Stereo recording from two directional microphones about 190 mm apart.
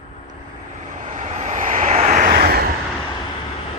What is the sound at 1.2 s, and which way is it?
Vehicle, 40° right (ahead or behind).